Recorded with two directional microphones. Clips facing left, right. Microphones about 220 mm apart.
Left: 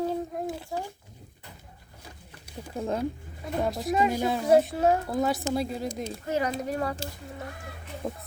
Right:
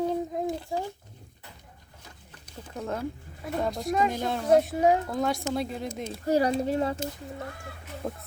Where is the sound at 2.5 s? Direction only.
10° left (ahead or behind).